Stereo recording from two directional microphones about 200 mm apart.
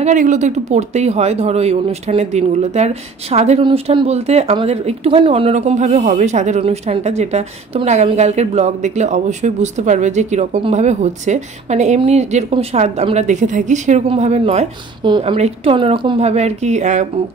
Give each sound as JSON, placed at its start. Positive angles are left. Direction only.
{"t": 0.0, "sound": "speech", "side_deg": -40}